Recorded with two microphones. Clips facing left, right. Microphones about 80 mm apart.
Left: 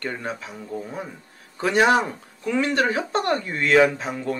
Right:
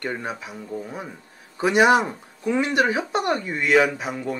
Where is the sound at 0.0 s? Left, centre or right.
Centre.